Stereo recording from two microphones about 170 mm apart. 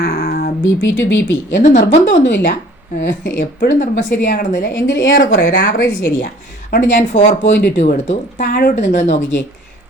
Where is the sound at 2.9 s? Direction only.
90° left.